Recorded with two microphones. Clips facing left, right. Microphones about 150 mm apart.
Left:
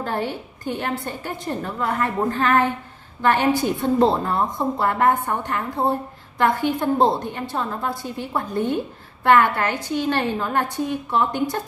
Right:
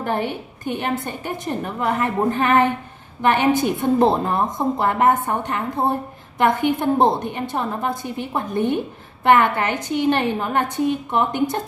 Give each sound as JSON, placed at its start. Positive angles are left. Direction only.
{"t": 0.0, "sound": "a woman's voice", "side_deg": -20}